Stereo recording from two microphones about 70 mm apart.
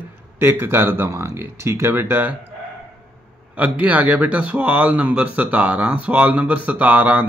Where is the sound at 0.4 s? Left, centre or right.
Right.